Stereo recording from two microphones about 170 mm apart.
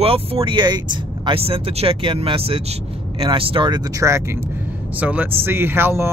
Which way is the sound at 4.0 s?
15° right (ahead or behind).